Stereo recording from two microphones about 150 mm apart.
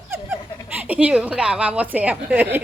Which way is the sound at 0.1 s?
15° right (ahead or behind).